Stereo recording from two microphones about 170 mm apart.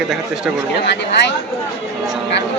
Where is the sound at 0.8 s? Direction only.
90° left.